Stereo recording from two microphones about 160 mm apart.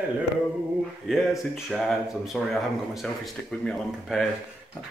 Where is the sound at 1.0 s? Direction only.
Centre (ahead or behind).